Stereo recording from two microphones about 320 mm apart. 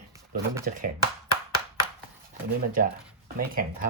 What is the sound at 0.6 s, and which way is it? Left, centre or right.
Speech, right.